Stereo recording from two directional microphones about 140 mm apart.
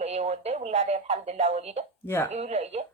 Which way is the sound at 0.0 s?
50° right (ahead or behind).